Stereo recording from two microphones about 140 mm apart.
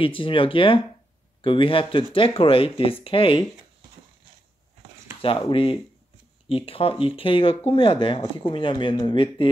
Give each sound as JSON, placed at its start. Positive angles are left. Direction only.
{"t": 0.0, "sound": "speech", "side_deg": 40}
{"t": 5.2, "sound": "speech", "side_deg": 40}